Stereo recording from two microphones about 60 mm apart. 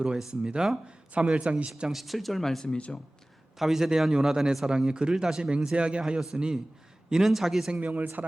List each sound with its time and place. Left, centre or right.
0.2 s a man's voice: centre
1.9 s speech: centre
2.7 s speech: centre
3.6 s a man's voice: centre
7.7 s speech: right